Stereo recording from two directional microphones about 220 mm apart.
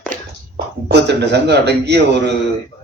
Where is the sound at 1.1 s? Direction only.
50° right (ahead or behind).